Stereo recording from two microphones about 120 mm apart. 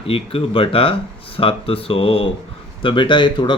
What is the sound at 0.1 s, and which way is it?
Speech, 50° left (ahead or behind).